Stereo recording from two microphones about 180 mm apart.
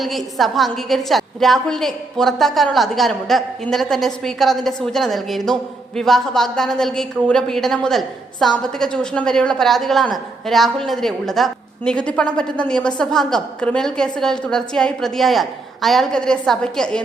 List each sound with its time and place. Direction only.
0.0 s a woman's voice: centre (ahead or behind)